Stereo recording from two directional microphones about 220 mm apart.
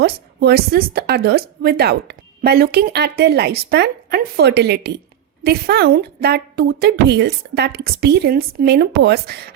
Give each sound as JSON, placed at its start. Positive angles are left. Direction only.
{"t": 0.3, "sound": "speech", "side_deg": -45}